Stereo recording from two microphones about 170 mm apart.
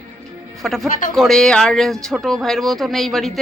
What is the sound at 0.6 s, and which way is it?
Speech, centre (ahead or behind).